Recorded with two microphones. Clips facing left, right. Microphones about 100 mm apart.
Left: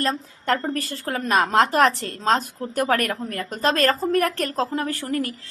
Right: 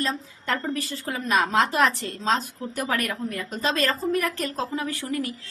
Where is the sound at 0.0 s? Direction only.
50° left (ahead or behind).